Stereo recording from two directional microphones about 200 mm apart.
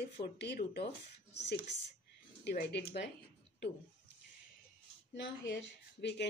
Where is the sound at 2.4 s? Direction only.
55° left (ahead or behind).